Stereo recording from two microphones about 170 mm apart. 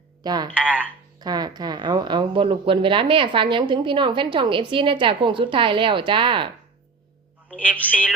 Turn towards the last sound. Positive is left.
turn(degrees=-10)  # may be behind; listen again after turning